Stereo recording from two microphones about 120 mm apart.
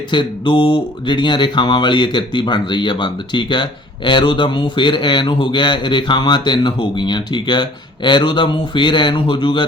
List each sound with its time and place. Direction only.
0.1 s speech: 40° left (ahead or behind)